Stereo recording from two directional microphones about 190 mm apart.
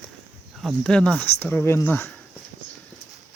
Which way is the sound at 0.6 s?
Centre (ahead or behind).